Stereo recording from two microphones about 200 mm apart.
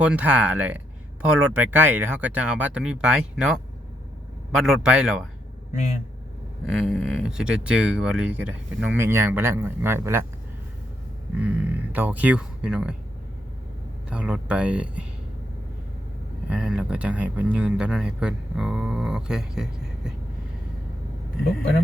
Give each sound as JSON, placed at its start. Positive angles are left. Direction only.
{"t": 0.0, "sound": "speech", "side_deg": -5}
{"t": 6.7, "sound": "speech", "side_deg": 0}
{"t": 11.3, "sound": "speech", "side_deg": -5}
{"t": 14.1, "sound": "speech", "side_deg": -5}
{"t": 16.5, "sound": "speech", "side_deg": -5}